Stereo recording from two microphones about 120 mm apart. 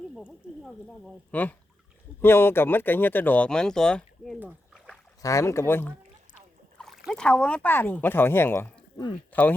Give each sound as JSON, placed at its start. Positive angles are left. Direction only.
{"t": 0.6, "sound": "speech", "side_deg": 0}
{"t": 1.3, "sound": "speech", "side_deg": 15}
{"t": 4.4, "sound": "a sound", "side_deg": -10}
{"t": 5.2, "sound": "speech", "side_deg": 25}
{"t": 6.7, "sound": "a sound", "side_deg": 0}
{"t": 7.1, "sound": "speech", "side_deg": 5}